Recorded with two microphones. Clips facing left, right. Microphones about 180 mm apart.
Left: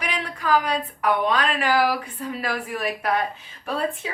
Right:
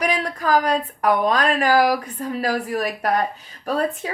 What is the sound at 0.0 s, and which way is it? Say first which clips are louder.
A woman's voice: right 6 dB; 40° right (ahead or behind).